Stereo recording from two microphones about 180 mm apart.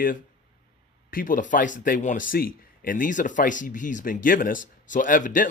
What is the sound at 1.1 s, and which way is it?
Speech, 50° left (ahead or behind).